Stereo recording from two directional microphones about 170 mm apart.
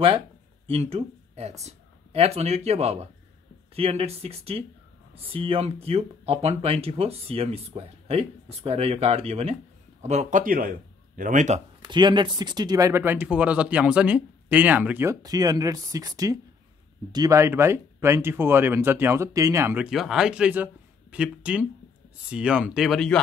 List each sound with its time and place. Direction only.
0.7 s speech: 35° right (ahead or behind)
11.9 s speech: 25° right (ahead or behind); by 23.2 s 5° left (ahead or behind)